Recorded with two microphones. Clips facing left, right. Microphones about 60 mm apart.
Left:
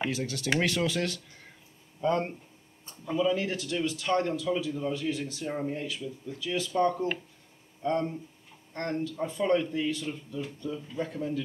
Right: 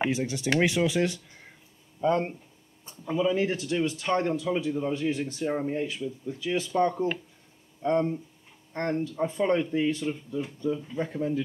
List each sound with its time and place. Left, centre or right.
0.0 s speech: centre